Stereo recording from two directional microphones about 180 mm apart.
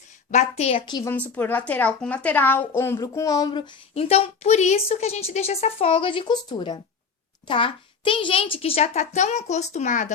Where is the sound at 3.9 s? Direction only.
35° left (ahead or behind).